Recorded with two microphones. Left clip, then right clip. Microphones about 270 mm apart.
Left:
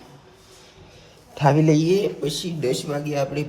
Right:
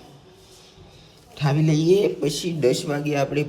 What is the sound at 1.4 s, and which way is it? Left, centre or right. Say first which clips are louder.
Speech: left 6 dB; centre.